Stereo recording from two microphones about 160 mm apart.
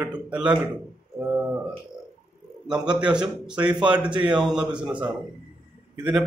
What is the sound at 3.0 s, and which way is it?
A man's voice, 5° right (ahead or behind).